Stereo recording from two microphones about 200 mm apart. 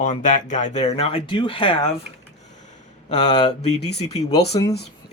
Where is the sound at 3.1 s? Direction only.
35° left (ahead or behind).